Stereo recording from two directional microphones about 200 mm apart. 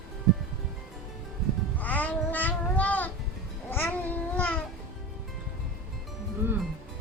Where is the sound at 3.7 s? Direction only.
10° left (ahead or behind).